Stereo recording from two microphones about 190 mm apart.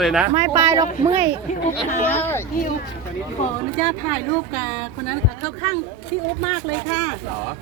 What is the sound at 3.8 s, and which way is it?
Speech, 35° left (ahead or behind).